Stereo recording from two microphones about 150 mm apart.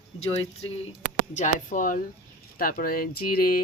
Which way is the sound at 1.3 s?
55° left (ahead or behind).